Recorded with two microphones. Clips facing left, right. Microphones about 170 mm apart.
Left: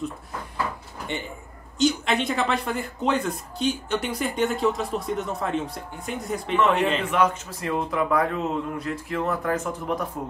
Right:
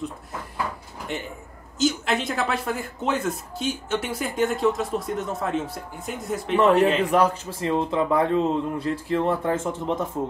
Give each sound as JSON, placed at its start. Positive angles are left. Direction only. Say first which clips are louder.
{"t": 1.1, "sound": "speech", "louder": "right 1 dB", "side_deg": -5}
{"t": 6.5, "sound": "a man's voice", "louder": "right 4 dB", "side_deg": -40}